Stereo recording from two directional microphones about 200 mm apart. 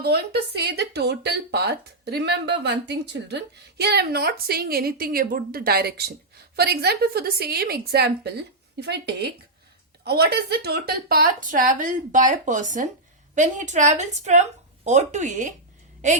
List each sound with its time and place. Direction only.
0.0 s a woman's voice: 55° right (ahead or behind); by 15.5 s 40° right (ahead or behind)